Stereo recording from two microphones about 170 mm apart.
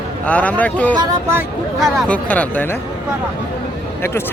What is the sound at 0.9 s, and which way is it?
Speech, 25° right (ahead or behind).